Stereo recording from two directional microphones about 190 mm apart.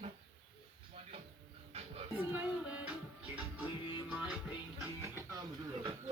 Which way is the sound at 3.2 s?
5° right (ahead or behind).